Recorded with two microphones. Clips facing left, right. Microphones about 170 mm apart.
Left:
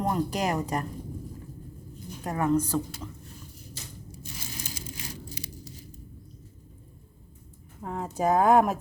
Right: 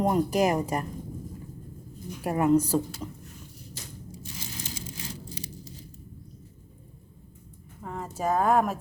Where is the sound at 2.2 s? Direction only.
10° right (ahead or behind).